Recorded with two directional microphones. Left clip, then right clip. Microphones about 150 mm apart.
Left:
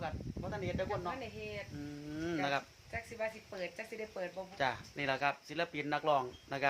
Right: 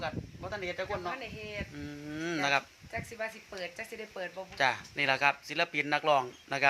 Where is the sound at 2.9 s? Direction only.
Centre (ahead or behind).